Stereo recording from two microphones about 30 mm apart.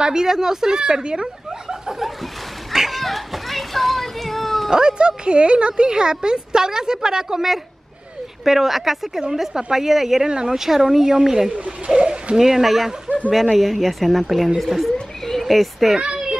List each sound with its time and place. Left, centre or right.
0.0 s speech: right
2.7 s speech: centre
3.0 s a child's voice: centre
4.6 s speech: centre
4.9 s speech: right
8.5 s a woman's voice: centre
10.2 s a woman's voice: right
11.5 s speech: right
12.4 s a woman's voice: centre
12.6 s speech: centre
14.9 s a sound: centre
15.4 s speech: centre
16.0 s a sound: right